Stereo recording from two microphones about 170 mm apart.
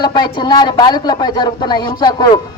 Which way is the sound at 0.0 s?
25° left (ahead or behind).